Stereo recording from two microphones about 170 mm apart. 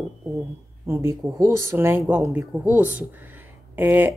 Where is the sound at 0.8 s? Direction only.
15° right (ahead or behind).